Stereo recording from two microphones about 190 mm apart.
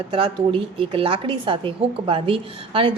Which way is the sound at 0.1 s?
30° right (ahead or behind).